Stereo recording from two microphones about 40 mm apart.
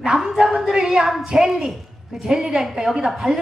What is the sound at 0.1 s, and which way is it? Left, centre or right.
A woman's voice, centre.